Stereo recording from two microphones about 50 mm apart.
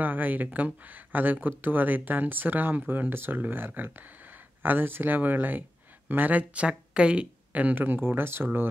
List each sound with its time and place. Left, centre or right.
0.0 s speech: right
7.7 s speech: right